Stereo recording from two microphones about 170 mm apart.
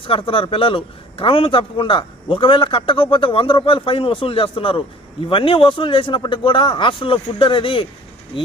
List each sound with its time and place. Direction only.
0.0 s a man's voice: 30° left (ahead or behind)